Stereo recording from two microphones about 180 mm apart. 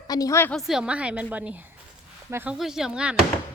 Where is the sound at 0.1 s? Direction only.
20° left (ahead or behind).